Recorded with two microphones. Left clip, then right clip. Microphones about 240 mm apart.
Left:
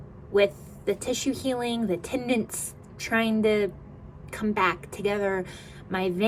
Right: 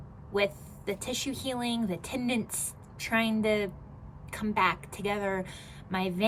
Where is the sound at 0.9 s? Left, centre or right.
Centre.